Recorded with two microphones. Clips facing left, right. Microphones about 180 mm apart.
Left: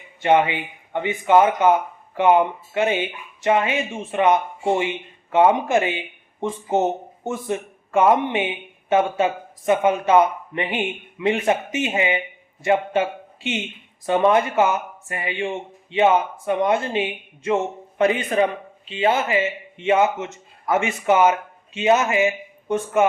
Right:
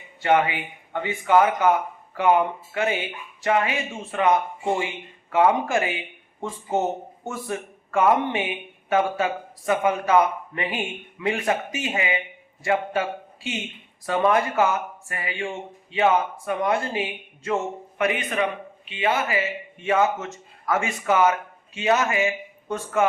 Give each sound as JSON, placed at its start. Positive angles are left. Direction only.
{"t": 0.2, "sound": "speech", "side_deg": 20}